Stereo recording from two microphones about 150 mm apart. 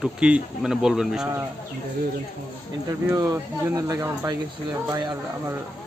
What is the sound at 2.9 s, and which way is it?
Speech, 20° right (ahead or behind).